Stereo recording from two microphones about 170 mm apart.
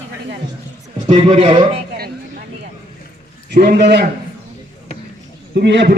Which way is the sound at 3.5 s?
75° right (ahead or behind).